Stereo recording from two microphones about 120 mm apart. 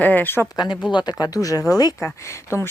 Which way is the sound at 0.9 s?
35° left (ahead or behind).